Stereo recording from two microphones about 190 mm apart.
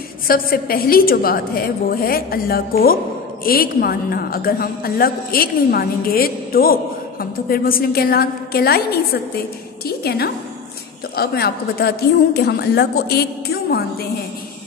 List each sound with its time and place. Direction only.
0.3 s a woman's voice: 50° left (ahead or behind)